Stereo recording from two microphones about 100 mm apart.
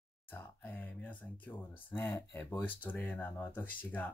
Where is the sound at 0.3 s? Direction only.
20° left (ahead or behind).